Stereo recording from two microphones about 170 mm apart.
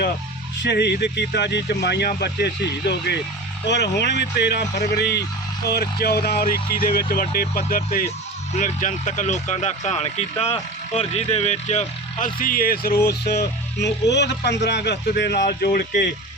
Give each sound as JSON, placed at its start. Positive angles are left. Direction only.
{"t": 0.6, "sound": "speech", "side_deg": 75}
{"t": 13.4, "sound": "speech", "side_deg": 80}